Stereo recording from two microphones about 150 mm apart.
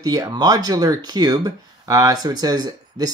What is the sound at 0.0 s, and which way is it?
Speech, 25° right (ahead or behind).